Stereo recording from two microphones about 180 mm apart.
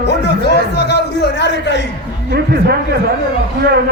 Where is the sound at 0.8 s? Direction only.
65° left (ahead or behind).